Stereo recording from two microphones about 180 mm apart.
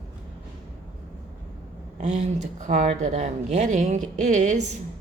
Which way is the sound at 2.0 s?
40° right (ahead or behind).